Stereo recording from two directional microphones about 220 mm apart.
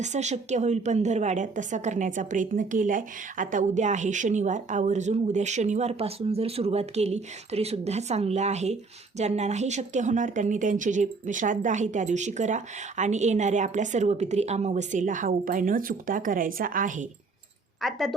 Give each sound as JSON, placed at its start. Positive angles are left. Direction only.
{"t": 0.0, "sound": "a woman's voice", "side_deg": -30}
{"t": 17.7, "sound": "speech", "side_deg": 0}